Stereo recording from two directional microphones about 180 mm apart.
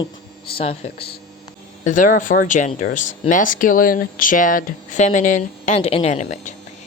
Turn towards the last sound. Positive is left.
turn(degrees=40)  # may be behind; listen again after turning